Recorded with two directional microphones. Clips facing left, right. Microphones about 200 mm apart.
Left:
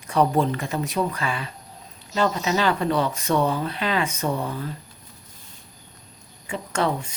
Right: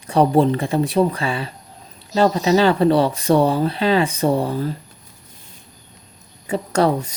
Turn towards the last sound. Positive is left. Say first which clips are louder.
# right 7 dB
turn(degrees=-40)  # may be behind; listen again after turning